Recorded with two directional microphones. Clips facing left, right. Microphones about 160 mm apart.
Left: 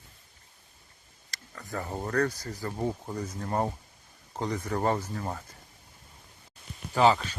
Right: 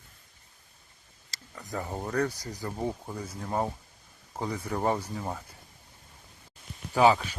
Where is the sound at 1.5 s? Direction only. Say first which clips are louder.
Even; 15° right (ahead or behind).